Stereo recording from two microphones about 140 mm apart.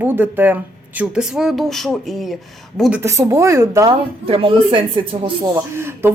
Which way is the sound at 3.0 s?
20° right (ahead or behind).